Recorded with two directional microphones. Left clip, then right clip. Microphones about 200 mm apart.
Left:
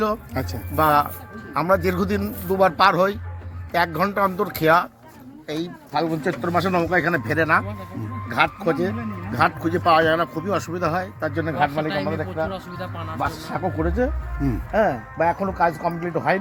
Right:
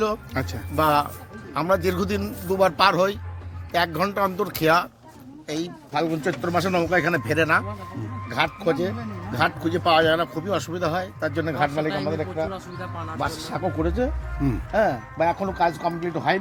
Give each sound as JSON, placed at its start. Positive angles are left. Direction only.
{"t": 0.0, "sound": "a man's voice", "side_deg": 0}
{"t": 12.5, "sound": "speech", "side_deg": 45}
{"t": 13.1, "sound": "a man's voice", "side_deg": 0}
{"t": 14.7, "sound": "speech", "side_deg": 20}